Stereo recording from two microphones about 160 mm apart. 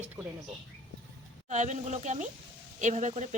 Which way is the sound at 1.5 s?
50° right (ahead or behind).